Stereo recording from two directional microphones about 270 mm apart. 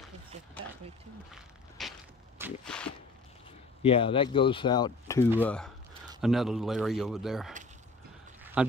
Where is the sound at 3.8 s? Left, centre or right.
Left.